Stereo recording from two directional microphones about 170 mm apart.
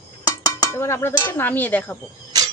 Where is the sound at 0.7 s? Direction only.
15° left (ahead or behind).